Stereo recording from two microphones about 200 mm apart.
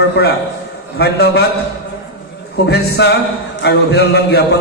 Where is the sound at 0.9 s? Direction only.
55° left (ahead or behind).